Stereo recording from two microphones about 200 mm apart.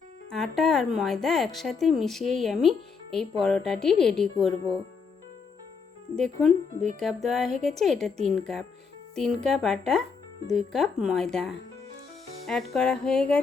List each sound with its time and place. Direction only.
0.3 s speech: centre (ahead or behind)
6.1 s speech: centre (ahead or behind)
12.7 s speech: 5° left (ahead or behind)